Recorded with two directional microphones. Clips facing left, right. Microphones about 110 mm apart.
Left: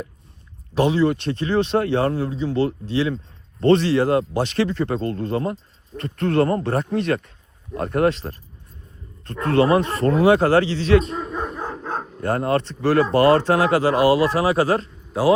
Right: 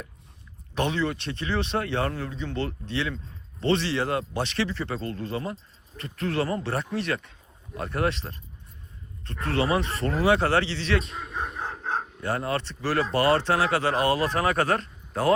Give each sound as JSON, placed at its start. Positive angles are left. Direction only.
{"t": 0.7, "sound": "a man's voice", "side_deg": 35}